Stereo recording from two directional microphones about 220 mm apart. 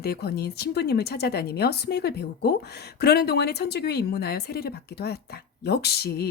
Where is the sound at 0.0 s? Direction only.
45° left (ahead or behind).